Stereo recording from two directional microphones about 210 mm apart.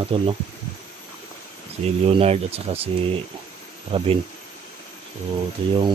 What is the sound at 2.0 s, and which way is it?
Speech, 30° right (ahead or behind).